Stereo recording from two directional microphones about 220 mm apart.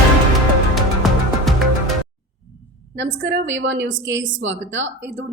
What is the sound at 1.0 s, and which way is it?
Music, centre (ahead or behind).